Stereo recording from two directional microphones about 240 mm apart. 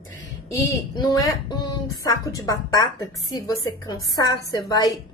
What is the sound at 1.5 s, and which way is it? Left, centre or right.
A woman's voice, centre.